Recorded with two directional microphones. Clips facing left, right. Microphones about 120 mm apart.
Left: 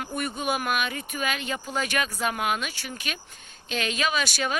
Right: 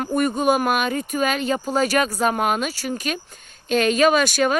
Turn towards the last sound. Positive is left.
turn(degrees=-45)  # may be behind; listen again after turning